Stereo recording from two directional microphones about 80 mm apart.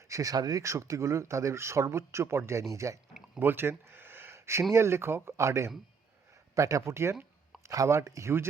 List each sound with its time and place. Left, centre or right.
0.1 s speech: right
3.4 s a sound: right
4.7 s speech: right